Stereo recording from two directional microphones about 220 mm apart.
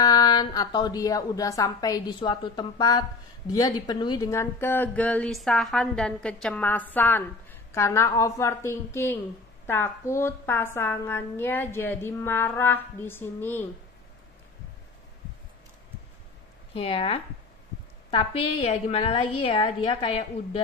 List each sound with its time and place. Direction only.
0.0 s a woman's voice: 20° left (ahead or behind)
16.7 s a woman's voice: 25° left (ahead or behind)